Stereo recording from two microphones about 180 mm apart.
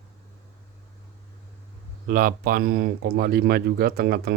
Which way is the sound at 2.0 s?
50° right (ahead or behind).